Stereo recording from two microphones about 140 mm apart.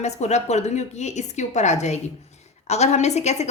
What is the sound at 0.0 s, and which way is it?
A woman's voice, 55° left (ahead or behind).